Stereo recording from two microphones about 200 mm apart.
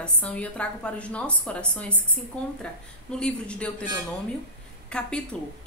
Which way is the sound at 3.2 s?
5° left (ahead or behind).